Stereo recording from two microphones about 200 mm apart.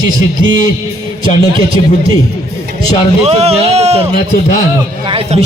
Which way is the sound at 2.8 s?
30° right (ahead or behind).